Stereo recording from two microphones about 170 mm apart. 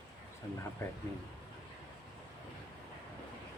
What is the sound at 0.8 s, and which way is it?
Speech, 15° left (ahead or behind).